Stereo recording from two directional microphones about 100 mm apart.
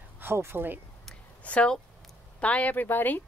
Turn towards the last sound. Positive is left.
turn(degrees=20)  # may be behind; listen again after turning